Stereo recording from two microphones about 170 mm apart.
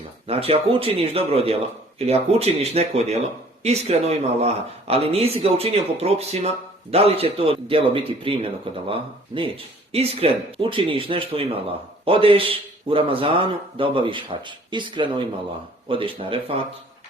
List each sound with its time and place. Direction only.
0.3 s speech: 35° right (ahead or behind)